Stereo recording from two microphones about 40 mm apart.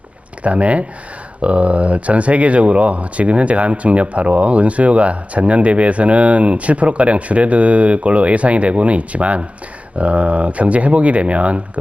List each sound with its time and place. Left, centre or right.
0.4 s speech: right